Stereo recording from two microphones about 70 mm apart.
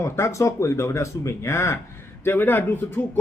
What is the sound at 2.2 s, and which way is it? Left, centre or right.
Speech, left.